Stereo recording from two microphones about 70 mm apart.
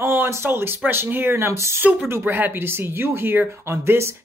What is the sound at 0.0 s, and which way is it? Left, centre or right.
Speech, right.